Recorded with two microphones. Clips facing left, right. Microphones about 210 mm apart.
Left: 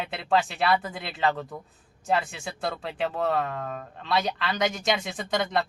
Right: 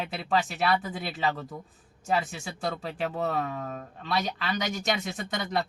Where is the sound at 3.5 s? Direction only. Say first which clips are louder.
Left 2 dB; 90° left.